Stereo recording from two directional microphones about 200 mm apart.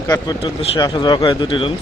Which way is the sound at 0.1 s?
20° left (ahead or behind).